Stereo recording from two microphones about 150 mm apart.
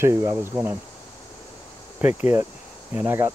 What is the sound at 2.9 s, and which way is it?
Speech, 15° right (ahead or behind).